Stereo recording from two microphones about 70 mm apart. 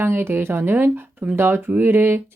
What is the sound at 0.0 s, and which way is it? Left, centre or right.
Speech, right.